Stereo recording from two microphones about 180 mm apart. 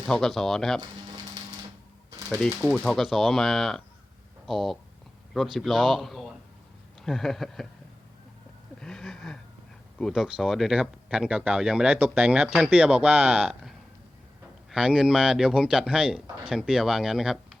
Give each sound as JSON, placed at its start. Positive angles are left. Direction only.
{"t": 0.1, "sound": "speech", "side_deg": 0}
{"t": 0.8, "sound": "a sound", "side_deg": -20}
{"t": 2.0, "sound": "typewriter", "side_deg": -20}
{"t": 2.4, "sound": "speech", "side_deg": -5}
{"t": 8.8, "sound": "a sound", "side_deg": 5}
{"t": 10.0, "sound": "speech", "side_deg": 0}